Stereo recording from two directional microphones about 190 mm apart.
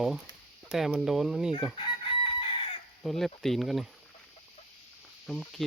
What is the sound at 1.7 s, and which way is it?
Chicken, 25° left (ahead or behind).